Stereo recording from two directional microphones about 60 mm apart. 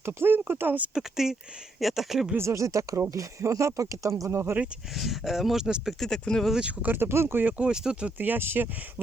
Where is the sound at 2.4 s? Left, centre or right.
Right.